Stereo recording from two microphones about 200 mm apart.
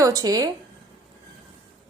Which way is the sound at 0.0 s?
15° right (ahead or behind).